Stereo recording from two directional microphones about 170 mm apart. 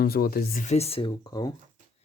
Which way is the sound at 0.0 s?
60° left (ahead or behind).